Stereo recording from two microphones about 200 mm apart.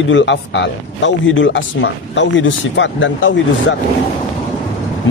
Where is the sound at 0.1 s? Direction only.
65° left (ahead or behind).